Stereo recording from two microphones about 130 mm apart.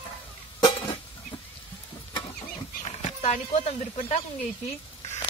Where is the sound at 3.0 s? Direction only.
60° left (ahead or behind).